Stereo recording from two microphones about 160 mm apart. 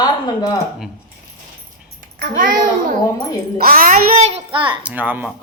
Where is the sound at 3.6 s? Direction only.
65° right (ahead or behind).